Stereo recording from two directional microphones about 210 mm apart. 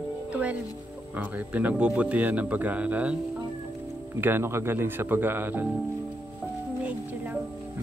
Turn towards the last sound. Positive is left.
turn(degrees=-10)  # may be behind; listen again after turning